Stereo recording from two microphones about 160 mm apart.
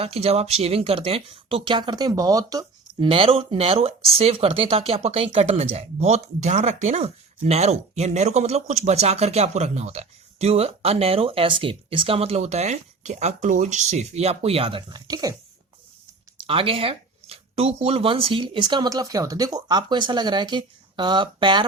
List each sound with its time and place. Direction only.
0.0 s speech: 40° right (ahead or behind); by 3.1 s 20° right (ahead or behind)
3.1 s speech: 35° right (ahead or behind)
16.5 s speech: 35° right (ahead or behind)